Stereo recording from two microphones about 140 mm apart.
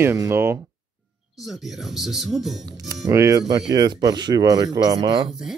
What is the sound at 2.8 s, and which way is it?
Speech, 25° right (ahead or behind).